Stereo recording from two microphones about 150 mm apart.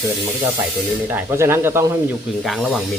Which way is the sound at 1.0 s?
15° right (ahead or behind).